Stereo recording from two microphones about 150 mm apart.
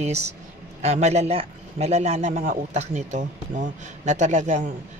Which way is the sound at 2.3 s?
70° right (ahead or behind).